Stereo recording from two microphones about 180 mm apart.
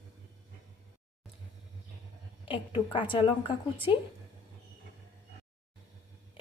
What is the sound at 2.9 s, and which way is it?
Speech, 30° left (ahead or behind).